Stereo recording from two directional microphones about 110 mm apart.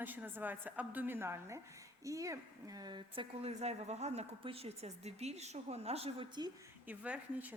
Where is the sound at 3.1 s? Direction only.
70° right (ahead or behind).